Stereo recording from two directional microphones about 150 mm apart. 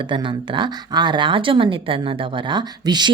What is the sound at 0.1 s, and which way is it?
Speech, 30° right (ahead or behind).